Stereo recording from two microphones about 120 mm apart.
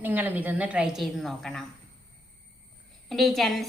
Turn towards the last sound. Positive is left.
turn(degrees=0)  # may be behind; listen again after turning